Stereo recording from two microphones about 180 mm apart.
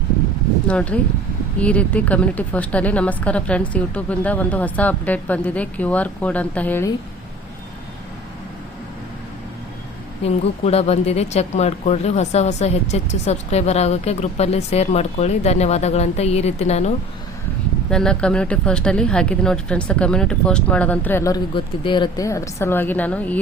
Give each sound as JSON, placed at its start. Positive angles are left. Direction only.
{"t": 0.7, "sound": "speech", "side_deg": 5}
{"t": 10.2, "sound": "speech", "side_deg": 35}
{"t": 17.9, "sound": "speech", "side_deg": 5}